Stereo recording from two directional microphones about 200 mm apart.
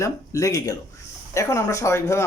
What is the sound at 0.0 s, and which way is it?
Speech, 15° left (ahead or behind).